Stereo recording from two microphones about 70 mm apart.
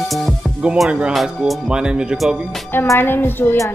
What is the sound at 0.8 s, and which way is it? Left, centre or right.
Speech, centre.